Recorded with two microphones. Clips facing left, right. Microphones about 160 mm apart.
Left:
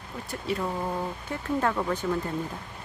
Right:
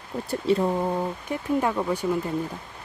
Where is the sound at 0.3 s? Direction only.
30° right (ahead or behind); by 2.3 s 10° right (ahead or behind).